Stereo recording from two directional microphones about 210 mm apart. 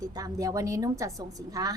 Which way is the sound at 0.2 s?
15° right (ahead or behind).